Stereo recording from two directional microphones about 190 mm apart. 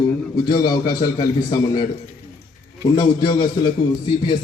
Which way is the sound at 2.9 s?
25° left (ahead or behind).